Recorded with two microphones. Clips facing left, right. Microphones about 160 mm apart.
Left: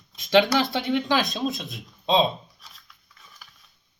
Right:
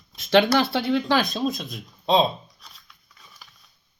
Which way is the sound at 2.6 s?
Centre (ahead or behind).